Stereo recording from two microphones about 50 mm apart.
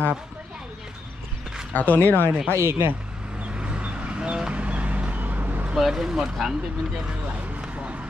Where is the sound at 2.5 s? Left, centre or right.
Right.